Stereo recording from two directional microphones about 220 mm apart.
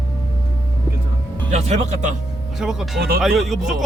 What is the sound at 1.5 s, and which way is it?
Speech, 30° right (ahead or behind).